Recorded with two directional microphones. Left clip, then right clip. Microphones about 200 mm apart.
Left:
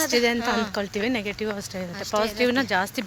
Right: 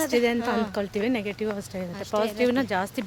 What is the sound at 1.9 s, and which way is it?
Speech, 15° right (ahead or behind).